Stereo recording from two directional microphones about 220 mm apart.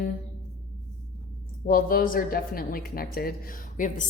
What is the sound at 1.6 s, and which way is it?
A woman's voice, 40° left (ahead or behind).